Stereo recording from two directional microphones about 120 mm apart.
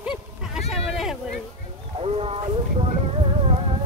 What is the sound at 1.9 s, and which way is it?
Wild animals, 55° right (ahead or behind).